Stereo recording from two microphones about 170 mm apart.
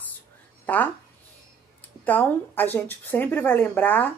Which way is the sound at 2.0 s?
10° left (ahead or behind).